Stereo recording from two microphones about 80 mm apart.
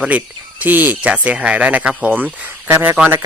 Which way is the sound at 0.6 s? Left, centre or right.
Right.